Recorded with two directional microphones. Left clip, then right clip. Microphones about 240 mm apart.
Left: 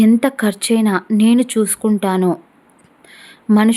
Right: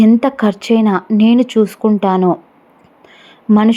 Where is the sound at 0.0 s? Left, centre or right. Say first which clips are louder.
Right 3 dB; centre.